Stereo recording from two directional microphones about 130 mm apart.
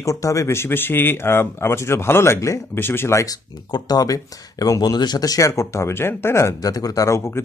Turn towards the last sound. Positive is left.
turn(degrees=25)  # may be behind; listen again after turning